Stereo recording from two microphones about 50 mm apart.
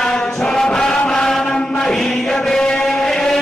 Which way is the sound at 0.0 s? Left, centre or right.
Centre.